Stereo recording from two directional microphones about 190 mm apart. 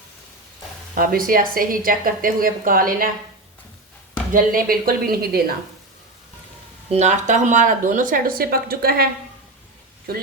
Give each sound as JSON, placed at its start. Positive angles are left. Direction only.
{"t": 0.9, "sound": "speech", "side_deg": -50}
{"t": 4.3, "sound": "speech", "side_deg": -50}
{"t": 6.9, "sound": "speech", "side_deg": -40}